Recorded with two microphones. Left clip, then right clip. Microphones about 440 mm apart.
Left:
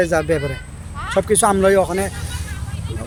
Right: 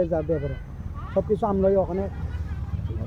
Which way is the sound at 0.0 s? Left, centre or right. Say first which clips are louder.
Left 7 dB; right.